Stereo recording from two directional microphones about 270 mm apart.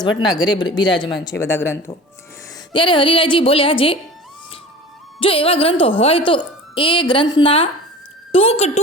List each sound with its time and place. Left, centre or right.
0.2 s speech: centre
5.2 s speech: centre